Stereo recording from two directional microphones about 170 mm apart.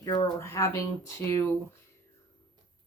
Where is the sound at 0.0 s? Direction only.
20° left (ahead or behind).